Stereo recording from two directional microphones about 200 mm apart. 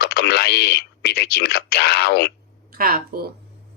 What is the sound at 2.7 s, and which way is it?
Speech, 50° right (ahead or behind).